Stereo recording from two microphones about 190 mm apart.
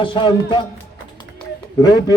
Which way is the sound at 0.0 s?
25° left (ahead or behind).